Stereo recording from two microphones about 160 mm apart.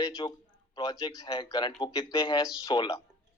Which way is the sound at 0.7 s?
25° left (ahead or behind).